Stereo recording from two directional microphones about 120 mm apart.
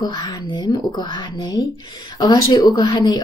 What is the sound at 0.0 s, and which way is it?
A woman's voice, 35° left (ahead or behind).